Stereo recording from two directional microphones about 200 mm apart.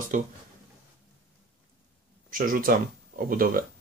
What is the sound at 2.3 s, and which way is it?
Speech, 45° right (ahead or behind).